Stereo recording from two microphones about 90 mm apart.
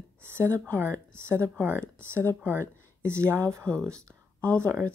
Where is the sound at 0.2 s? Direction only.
25° right (ahead or behind).